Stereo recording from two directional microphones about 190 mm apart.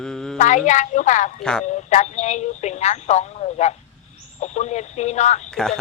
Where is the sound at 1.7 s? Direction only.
40° left (ahead or behind).